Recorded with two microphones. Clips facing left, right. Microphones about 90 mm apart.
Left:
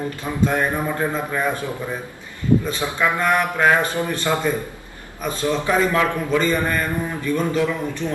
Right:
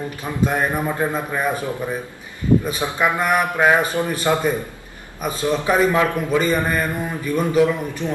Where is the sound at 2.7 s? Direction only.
15° right (ahead or behind).